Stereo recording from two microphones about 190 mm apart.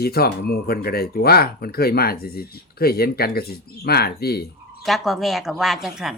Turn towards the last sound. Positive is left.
turn(degrees=0)  # may be behind; listen again after turning